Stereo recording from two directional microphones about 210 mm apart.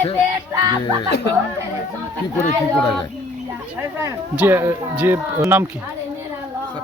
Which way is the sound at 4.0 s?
10° right (ahead or behind).